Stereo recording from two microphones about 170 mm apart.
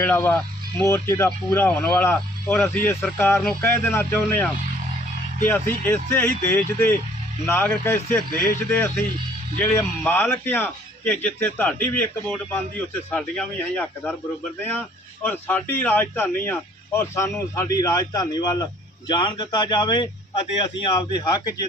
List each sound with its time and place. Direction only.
0.0 s a man's voice: 10° left (ahead or behind)
5.5 s a man's voice: 10° left (ahead or behind)
8.3 s a man's voice: 55° left (ahead or behind)
8.7 s a man's voice: 10° left (ahead or behind)